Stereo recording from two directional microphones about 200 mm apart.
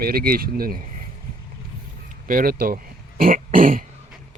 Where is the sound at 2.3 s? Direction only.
45° right (ahead or behind).